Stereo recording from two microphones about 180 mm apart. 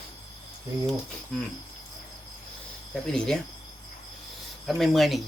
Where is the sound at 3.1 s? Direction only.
5° left (ahead or behind).